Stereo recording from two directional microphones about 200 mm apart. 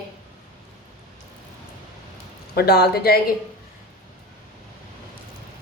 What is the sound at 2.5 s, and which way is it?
Speech, 55° left (ahead or behind).